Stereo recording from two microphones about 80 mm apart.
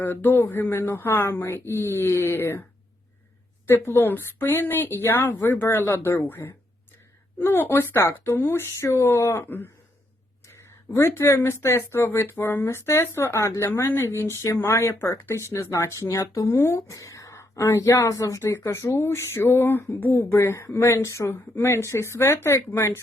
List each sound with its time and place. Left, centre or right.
0.0 s a woman's voice: left
3.7 s a woman's voice: left
10.9 s speech: left